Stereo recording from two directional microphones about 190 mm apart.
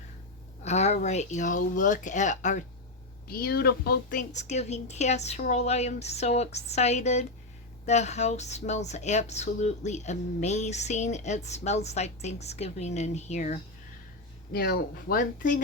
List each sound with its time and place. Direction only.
0.6 s speech: 35° left (ahead or behind)
3.2 s speech: 55° left (ahead or behind); by 13.6 s 35° left (ahead or behind)
14.5 s speech: 55° left (ahead or behind)